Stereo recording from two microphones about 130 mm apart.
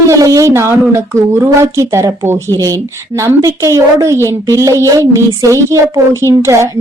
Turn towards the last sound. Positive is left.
turn(degrees=-20)  # may be behind; listen again after turning